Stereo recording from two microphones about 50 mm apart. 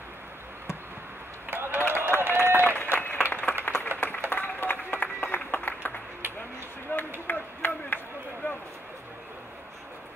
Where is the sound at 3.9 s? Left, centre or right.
Right.